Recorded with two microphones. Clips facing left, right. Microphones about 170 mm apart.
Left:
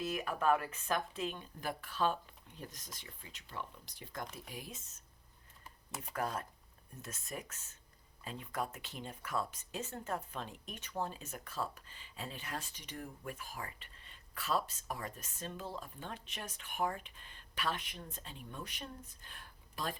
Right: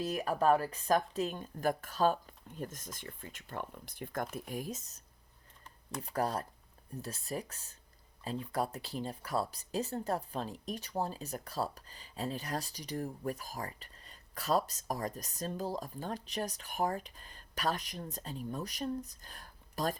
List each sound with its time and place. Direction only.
0.0 s speech: 35° right (ahead or behind)